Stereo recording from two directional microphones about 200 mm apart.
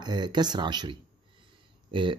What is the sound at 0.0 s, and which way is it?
Speech, 20° right (ahead or behind).